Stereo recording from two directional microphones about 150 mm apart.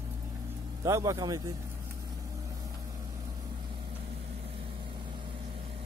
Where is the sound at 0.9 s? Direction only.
20° right (ahead or behind).